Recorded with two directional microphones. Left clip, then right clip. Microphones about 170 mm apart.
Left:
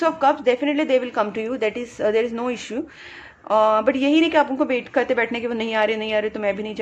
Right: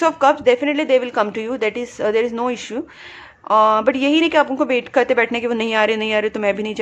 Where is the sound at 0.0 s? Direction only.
25° right (ahead or behind).